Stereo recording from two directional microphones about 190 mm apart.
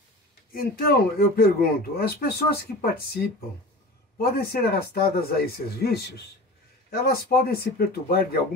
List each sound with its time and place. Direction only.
0.5 s speech: 50° left (ahead or behind)